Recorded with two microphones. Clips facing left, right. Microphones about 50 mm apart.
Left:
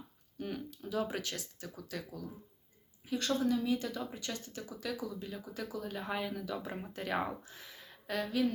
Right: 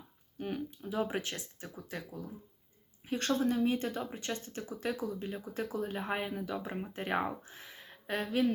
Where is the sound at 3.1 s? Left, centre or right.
Right.